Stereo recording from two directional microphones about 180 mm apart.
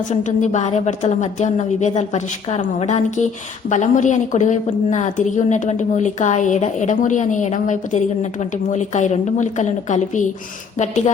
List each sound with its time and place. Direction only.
0.1 s a woman's voice: 40° left (ahead or behind)